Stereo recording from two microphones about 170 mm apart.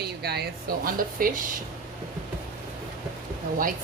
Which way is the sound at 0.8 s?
55° right (ahead or behind).